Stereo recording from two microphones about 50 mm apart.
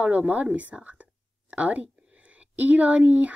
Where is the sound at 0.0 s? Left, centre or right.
Right.